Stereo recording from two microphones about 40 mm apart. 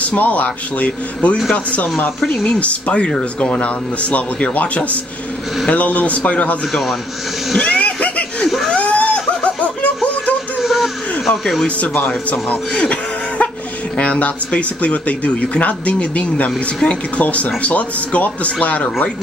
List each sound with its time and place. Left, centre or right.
0.0 s speech: left
0.8 s a man's voice: left
6.7 s a man's voice: centre
7.5 s a sound: left
10.6 s a sound: centre
12.3 s a man's voice: left